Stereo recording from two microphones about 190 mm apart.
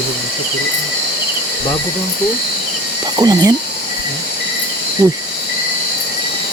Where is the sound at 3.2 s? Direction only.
20° right (ahead or behind).